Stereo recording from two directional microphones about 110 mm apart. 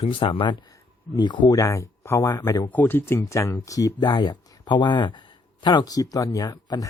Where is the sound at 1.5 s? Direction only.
30° left (ahead or behind).